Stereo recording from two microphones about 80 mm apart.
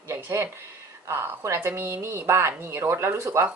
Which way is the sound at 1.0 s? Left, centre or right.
Right.